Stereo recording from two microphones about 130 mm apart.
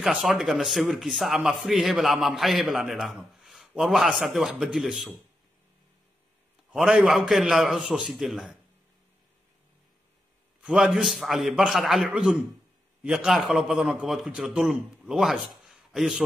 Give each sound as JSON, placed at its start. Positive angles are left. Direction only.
{"t": 0.0, "sound": "speech", "side_deg": -5}
{"t": 6.7, "sound": "speech", "side_deg": -5}
{"t": 10.6, "sound": "speech", "side_deg": -5}